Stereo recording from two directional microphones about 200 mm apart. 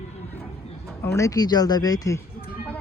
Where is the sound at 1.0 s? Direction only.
15° left (ahead or behind).